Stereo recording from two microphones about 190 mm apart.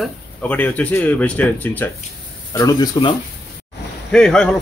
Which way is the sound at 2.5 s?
20° left (ahead or behind).